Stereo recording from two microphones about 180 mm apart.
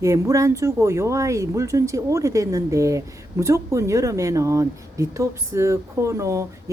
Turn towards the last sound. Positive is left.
turn(degrees=-15)  # may be behind; listen again after turning